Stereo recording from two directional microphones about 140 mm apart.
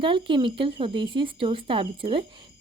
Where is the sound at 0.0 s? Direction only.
35° right (ahead or behind).